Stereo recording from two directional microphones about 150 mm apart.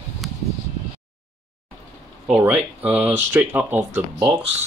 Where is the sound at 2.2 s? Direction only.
5° right (ahead or behind).